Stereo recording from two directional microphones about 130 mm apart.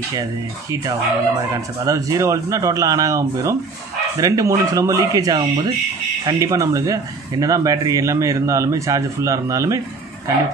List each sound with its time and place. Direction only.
0.1 s speech: 30° right (ahead or behind)